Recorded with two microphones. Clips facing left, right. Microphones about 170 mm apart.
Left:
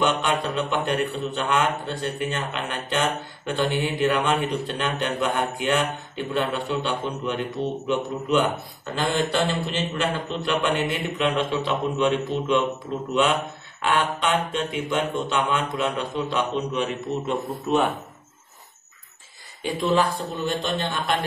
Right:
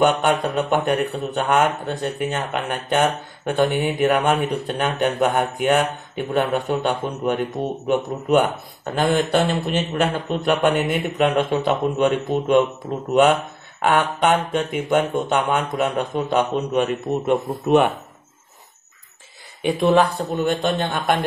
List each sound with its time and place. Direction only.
0.0 s speech: 50° right (ahead or behind)
19.6 s a man's voice: 60° right (ahead or behind)